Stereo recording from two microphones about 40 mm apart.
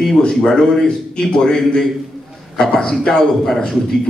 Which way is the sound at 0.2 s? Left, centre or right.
Centre.